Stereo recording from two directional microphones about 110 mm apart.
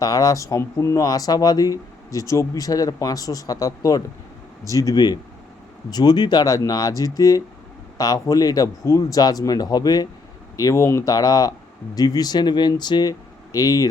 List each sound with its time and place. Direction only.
0.0 s speech: 35° left (ahead or behind)